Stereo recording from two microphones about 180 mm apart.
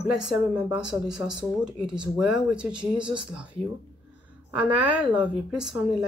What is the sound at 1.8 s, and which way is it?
Speech, 25° right (ahead or behind).